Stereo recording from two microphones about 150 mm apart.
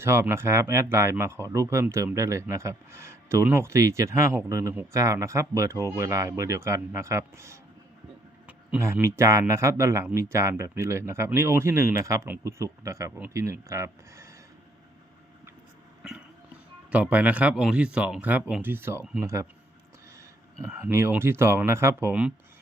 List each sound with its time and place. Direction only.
0.0 s speech: 15° right (ahead or behind)
16.9 s speech: 10° right (ahead or behind)
20.8 s speech: 15° right (ahead or behind)